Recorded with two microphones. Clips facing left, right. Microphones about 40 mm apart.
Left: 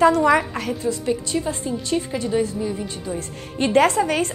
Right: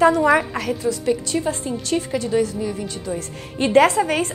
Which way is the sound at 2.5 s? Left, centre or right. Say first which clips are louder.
Even; right.